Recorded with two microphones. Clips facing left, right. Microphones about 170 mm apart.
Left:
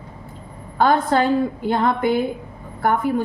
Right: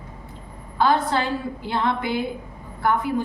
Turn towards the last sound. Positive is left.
turn(degrees=50)  # may be behind; listen again after turning